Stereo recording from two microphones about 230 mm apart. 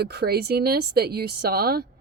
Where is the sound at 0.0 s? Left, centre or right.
Right.